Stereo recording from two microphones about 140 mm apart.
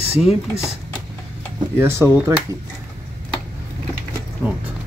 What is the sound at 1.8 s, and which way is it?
Speech, 20° right (ahead or behind).